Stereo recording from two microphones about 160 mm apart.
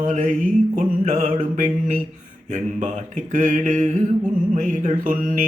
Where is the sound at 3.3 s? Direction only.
50° right (ahead or behind).